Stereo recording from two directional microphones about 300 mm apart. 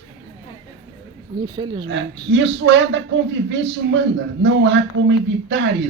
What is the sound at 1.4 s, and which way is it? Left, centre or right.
Speech, centre.